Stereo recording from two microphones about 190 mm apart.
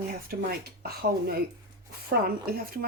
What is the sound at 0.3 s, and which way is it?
Speech, 50° right (ahead or behind).